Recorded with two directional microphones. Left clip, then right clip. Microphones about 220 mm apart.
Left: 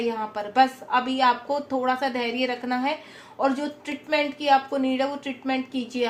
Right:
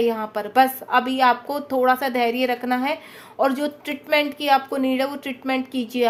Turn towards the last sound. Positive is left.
turn(degrees=-50)  # may be behind; listen again after turning